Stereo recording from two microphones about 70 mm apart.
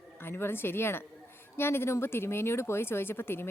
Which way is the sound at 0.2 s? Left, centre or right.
Left.